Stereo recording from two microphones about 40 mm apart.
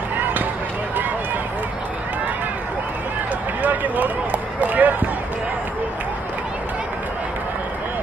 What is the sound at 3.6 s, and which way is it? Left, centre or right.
Basketball bounce, right.